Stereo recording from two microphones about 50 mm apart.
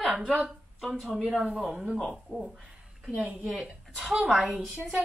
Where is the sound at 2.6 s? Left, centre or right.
Centre.